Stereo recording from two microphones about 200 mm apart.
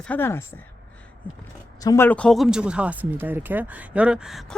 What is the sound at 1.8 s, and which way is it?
Speech, 15° left (ahead or behind).